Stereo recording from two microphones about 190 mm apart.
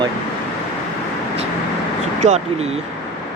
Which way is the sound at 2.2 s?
40° right (ahead or behind).